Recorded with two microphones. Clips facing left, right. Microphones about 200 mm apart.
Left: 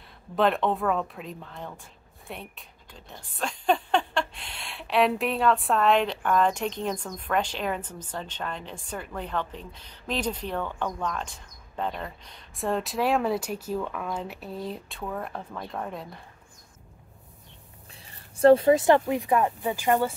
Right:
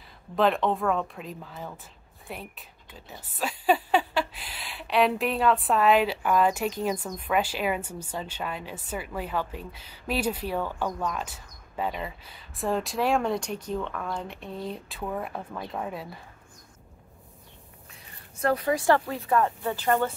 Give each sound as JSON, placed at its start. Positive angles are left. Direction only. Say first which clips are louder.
{"t": 0.4, "sound": "speech", "louder": "even", "side_deg": 0}
{"t": 18.4, "sound": "speech", "louder": "left 8 dB", "side_deg": 25}